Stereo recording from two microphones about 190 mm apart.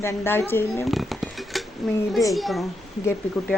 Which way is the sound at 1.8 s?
Centre (ahead or behind).